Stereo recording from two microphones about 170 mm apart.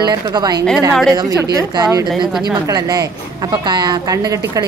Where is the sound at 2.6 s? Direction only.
20° right (ahead or behind).